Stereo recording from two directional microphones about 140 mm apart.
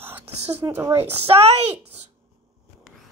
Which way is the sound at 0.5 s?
20° right (ahead or behind).